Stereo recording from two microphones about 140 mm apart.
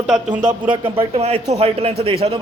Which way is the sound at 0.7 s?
40° right (ahead or behind).